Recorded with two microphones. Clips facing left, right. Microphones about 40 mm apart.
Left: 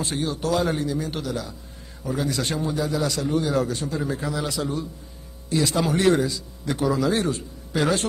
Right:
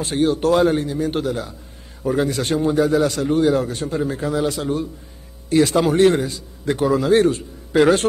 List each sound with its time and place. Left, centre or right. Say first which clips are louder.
0.0 s a man's voice: right 8 dB; right